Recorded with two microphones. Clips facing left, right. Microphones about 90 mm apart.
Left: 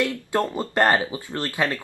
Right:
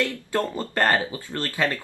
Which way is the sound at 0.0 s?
20° left (ahead or behind).